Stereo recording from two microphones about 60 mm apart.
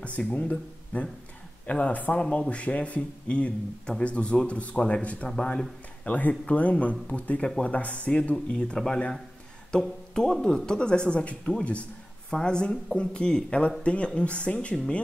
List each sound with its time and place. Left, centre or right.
0.0 s speech: left
2.2 s speech: centre
6.0 s speech: left